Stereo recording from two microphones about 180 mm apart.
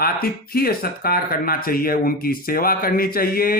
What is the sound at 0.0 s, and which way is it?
Speech, 55° left (ahead or behind).